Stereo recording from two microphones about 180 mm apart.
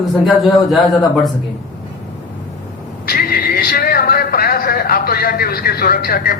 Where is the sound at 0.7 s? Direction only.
Centre (ahead or behind).